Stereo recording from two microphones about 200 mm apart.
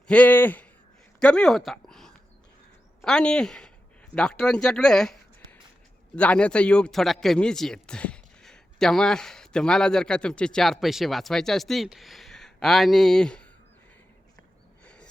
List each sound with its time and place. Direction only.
0.1 s a man's voice: 10° left (ahead or behind)